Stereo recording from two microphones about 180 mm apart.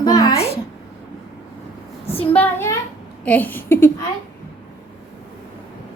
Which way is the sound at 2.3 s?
10° left (ahead or behind).